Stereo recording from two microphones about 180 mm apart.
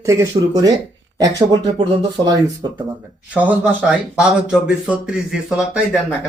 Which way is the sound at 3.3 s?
10° right (ahead or behind).